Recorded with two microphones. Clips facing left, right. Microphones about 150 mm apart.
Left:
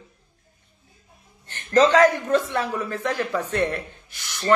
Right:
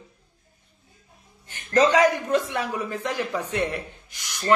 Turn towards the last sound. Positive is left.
turn(degrees=-15)  # may be behind; listen again after turning